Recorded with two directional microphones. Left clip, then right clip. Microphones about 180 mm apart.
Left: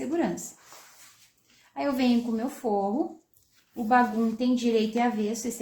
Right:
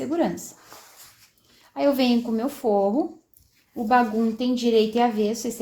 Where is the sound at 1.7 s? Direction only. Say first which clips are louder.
Right 5 dB; 35° right (ahead or behind).